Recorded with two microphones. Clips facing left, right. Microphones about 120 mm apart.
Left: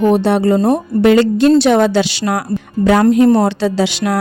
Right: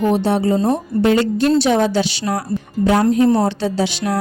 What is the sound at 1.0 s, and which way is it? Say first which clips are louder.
Speech: left 5 dB; 90° left.